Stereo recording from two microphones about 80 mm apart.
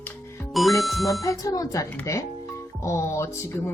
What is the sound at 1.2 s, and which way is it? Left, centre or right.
Speech, left.